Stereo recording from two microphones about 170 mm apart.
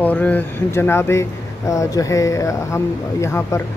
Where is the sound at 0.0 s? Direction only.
10° left (ahead or behind).